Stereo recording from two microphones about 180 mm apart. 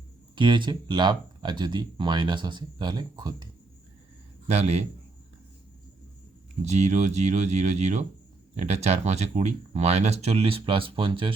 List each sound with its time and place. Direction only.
0.3 s speech: 25° right (ahead or behind)
4.4 s speech: 35° right (ahead or behind)
6.7 s speech: 40° right (ahead or behind)